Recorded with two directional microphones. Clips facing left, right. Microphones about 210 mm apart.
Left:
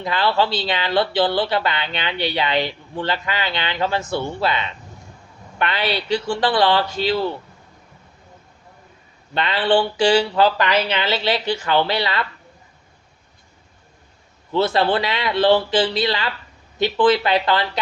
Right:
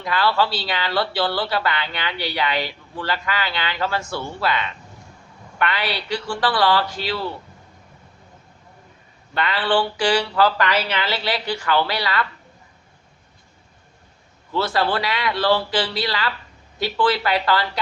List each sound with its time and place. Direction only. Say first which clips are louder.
0.0 s speech: left 1 dB; 25° left (ahead or behind)
9.3 s speech: left 3 dB; 25° left (ahead or behind)
14.5 s speech: left 3 dB; 25° left (ahead or behind)